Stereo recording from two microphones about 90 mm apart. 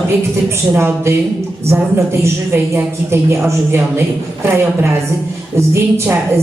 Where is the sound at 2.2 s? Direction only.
30° right (ahead or behind).